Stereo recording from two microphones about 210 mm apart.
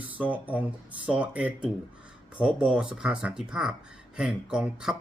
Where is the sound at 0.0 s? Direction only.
10° right (ahead or behind).